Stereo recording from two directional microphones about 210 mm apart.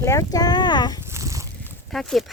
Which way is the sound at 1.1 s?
15° right (ahead or behind).